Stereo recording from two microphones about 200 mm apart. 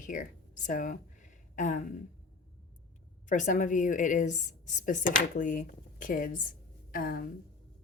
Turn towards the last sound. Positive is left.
turn(degrees=45)  # may be behind; listen again after turning